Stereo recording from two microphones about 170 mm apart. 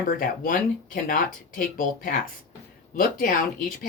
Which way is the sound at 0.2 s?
55° left (ahead or behind).